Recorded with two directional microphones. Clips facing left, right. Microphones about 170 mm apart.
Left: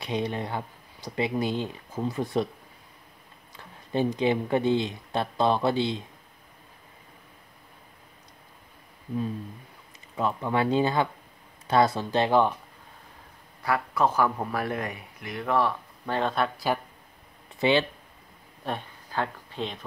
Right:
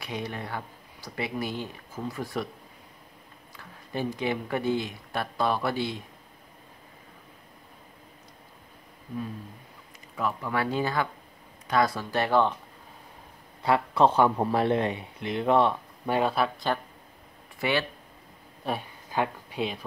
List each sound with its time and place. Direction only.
0.0 s speech: 25° left (ahead or behind)
3.5 s speech: 20° left (ahead or behind)
10.1 s speech: 25° left (ahead or behind)
13.6 s a man's voice: 25° right (ahead or behind)
16.2 s speech: 5° right (ahead or behind)
17.6 s speech: 20° left (ahead or behind)
18.6 s speech: 5° right (ahead or behind)
19.0 s speech: 15° right (ahead or behind)